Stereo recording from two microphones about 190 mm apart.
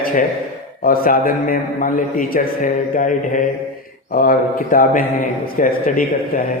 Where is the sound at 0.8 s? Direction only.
50° left (ahead or behind).